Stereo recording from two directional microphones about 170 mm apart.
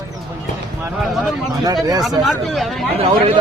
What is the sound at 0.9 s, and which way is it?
Speech, centre (ahead or behind).